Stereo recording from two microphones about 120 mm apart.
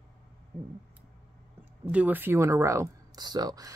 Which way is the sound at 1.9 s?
10° right (ahead or behind).